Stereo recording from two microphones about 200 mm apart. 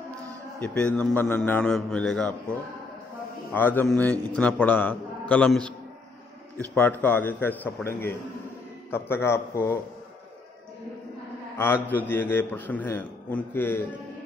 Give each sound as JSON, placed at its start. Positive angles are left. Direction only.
{"t": 0.6, "sound": "a man's voice", "side_deg": 5}
{"t": 3.5, "sound": "a man's voice", "side_deg": 10}
{"t": 11.5, "sound": "a man's voice", "side_deg": 10}